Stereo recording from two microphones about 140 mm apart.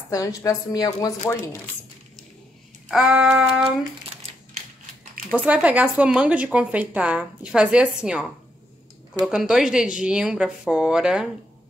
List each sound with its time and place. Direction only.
0.1 s speech: 25° left (ahead or behind)
2.9 s speech: 5° right (ahead or behind)
5.4 s speech: 10° right (ahead or behind)